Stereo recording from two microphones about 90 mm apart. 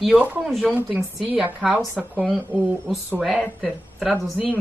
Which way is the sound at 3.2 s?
10° right (ahead or behind).